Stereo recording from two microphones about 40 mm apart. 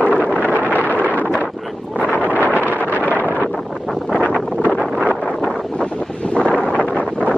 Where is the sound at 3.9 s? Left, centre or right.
Centre.